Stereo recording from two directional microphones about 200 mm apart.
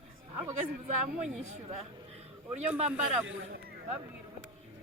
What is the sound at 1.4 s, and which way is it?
Speech, 35° right (ahead or behind).